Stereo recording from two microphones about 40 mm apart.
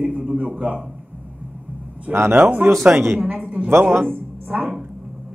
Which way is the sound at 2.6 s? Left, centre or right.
Right.